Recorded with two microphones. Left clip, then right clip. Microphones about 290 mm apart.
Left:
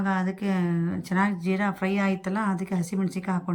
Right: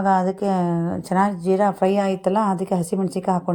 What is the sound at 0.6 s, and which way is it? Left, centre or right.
Speech, right.